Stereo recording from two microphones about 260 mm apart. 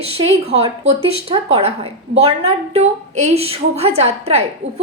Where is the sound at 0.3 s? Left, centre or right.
Right.